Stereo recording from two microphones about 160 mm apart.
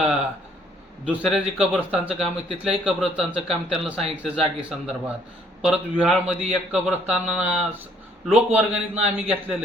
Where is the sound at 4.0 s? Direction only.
40° right (ahead or behind).